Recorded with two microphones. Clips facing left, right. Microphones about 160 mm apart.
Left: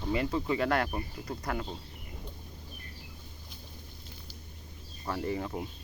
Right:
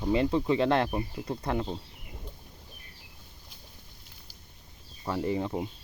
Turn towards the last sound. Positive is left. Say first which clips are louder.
# right 4 dB
turn(degrees=-15)  # may be behind; listen again after turning